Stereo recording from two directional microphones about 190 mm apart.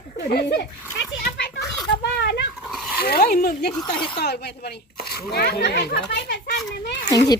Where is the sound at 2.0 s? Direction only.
65° left (ahead or behind).